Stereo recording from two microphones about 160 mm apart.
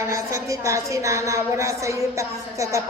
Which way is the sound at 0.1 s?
20° right (ahead or behind).